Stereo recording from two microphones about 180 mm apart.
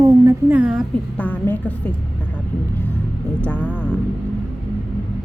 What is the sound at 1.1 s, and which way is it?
Speech, 10° left (ahead or behind).